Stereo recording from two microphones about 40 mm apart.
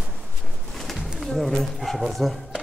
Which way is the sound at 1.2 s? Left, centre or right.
Centre.